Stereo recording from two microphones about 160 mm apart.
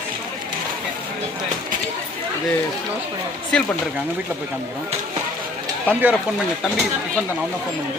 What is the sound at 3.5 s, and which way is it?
Speech, 5° left (ahead or behind).